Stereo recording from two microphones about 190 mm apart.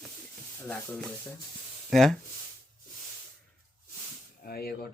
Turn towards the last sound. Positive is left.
turn(degrees=55)  # may be behind; listen again after turning